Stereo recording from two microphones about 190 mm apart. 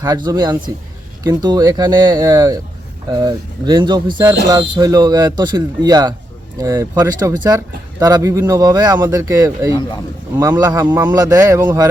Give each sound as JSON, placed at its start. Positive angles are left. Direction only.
{"t": 0.0, "sound": "speech", "side_deg": -20}